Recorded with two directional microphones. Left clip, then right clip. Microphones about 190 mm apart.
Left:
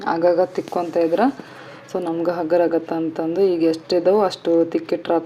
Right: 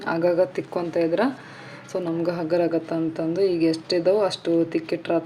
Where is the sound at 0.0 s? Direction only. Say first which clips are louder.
Left 4 dB; 10° left (ahead or behind).